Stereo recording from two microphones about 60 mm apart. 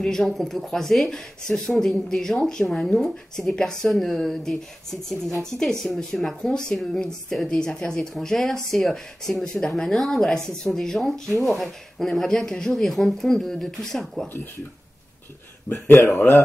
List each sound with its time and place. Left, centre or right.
0.0 s speech: centre
15.7 s speech: left